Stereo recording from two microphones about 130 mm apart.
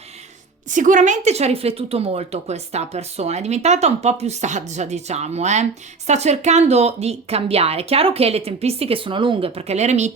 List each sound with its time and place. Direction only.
0.7 s a woman's voice: 80° right; by 10.1 s 60° right (ahead or behind)